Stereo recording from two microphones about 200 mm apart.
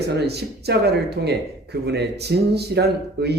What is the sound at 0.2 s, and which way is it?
Speech, 55° right (ahead or behind).